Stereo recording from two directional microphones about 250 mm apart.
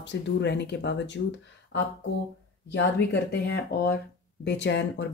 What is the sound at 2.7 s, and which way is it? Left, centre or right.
Speech, left.